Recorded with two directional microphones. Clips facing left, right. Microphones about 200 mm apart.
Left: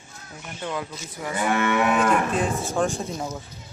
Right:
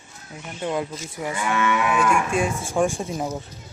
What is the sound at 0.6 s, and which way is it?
Speech, 25° right (ahead or behind).